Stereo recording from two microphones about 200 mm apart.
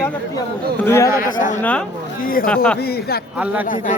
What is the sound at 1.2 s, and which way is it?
A man's voice, 40° left (ahead or behind).